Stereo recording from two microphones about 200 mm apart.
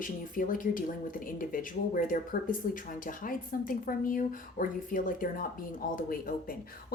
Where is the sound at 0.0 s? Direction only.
40° left (ahead or behind).